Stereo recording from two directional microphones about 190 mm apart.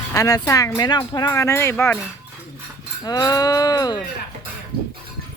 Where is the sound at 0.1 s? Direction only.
15° left (ahead or behind).